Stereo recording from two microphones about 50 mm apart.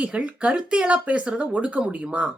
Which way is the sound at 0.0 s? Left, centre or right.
Right.